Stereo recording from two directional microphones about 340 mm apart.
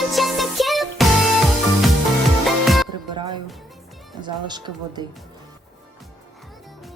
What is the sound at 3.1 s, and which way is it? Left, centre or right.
Music, centre.